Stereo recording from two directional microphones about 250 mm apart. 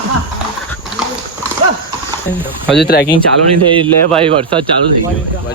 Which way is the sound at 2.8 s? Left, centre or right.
Left.